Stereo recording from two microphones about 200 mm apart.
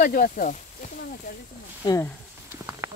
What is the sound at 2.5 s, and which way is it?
Patter, 10° right (ahead or behind).